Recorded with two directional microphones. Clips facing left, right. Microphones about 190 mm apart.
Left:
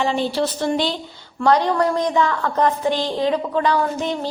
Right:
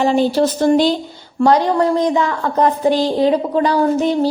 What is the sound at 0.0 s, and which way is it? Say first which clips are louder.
Speech: right 6 dB; 40° right (ahead or behind).